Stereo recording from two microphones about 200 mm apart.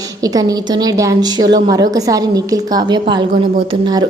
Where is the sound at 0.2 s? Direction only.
20° right (ahead or behind).